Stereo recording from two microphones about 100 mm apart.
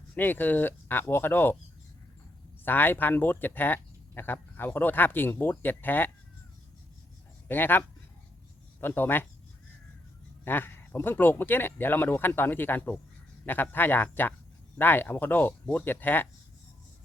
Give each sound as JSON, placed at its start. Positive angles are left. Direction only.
{"t": 0.1, "sound": "speech", "side_deg": 20}
{"t": 2.6, "sound": "speech", "side_deg": 20}
{"t": 7.4, "sound": "speech", "side_deg": 20}
{"t": 10.4, "sound": "speech", "side_deg": 20}